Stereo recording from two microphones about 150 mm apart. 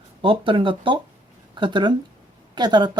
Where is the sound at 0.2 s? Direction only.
35° right (ahead or behind).